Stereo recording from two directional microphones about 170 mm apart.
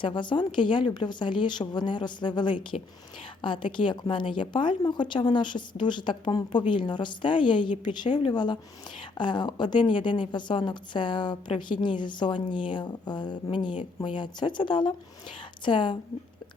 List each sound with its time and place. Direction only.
0.0 s a woman's voice: 25° left (ahead or behind)